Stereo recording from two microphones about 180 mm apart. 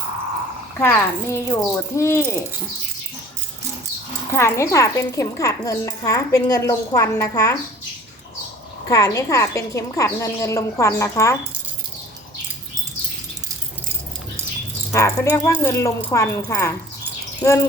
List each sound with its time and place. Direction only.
0.8 s a woman's voice: 15° left (ahead or behind)
4.3 s a woman's voice: 15° left (ahead or behind)
8.9 s a woman's voice: 20° left (ahead or behind)
14.9 s a woman's voice: 15° left (ahead or behind)